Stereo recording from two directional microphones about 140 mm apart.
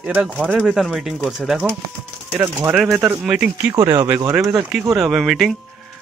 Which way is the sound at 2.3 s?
25° right (ahead or behind).